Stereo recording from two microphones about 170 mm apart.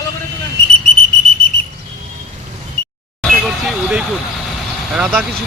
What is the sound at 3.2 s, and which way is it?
Vehicle, centre (ahead or behind).